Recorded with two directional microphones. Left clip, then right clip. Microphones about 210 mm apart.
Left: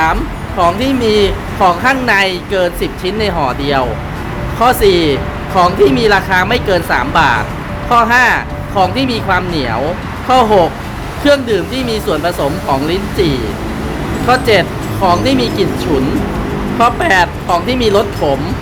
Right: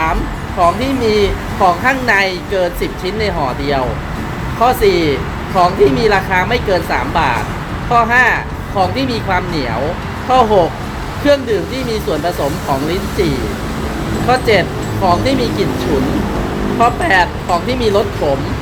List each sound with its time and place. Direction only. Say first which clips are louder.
0.6 s speech: left 1 dB; 15° left (ahead or behind)
16.8 s speech: left 2 dB; 15° left (ahead or behind)